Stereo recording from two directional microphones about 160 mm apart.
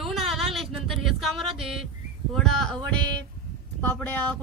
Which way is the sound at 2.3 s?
5° left (ahead or behind).